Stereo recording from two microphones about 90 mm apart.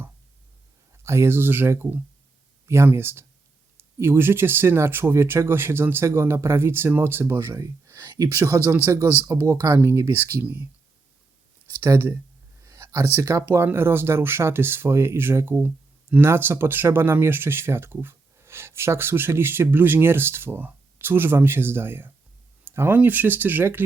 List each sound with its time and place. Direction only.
1.0 s speech: 30° right (ahead or behind)
11.8 s speech: 30° right (ahead or behind)
12.6 s a sound: 35° right (ahead or behind)
13.1 s speech: 35° right (ahead or behind)